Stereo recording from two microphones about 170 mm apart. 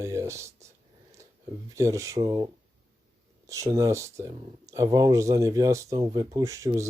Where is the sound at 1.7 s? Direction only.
20° right (ahead or behind).